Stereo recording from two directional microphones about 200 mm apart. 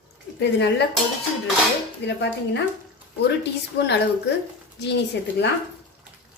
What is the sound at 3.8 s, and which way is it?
A woman's voice, 60° left (ahead or behind).